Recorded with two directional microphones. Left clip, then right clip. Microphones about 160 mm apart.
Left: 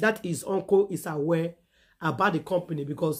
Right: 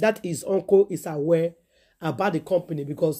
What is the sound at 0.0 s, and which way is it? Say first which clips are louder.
Speech: right 3 dB; 30° right (ahead or behind).